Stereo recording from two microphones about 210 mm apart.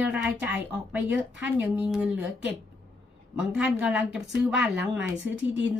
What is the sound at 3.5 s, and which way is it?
A woman's voice, 5° right (ahead or behind).